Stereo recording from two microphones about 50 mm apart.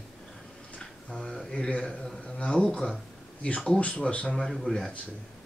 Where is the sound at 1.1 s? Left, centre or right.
Centre.